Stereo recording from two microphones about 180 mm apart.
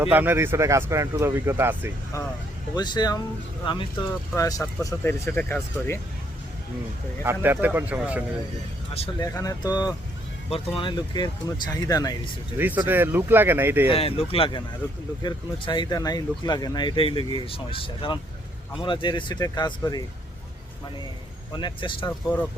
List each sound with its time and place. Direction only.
0.0 s speech: 10° right (ahead or behind)
2.1 s speech: 20° left (ahead or behind)
7.2 s speech: 15° right (ahead or behind)
9.2 s speech: 20° left (ahead or behind)
12.5 s speech: 10° right (ahead or behind)
13.8 s speech: 30° left (ahead or behind)
21.5 s speech: 25° left (ahead or behind)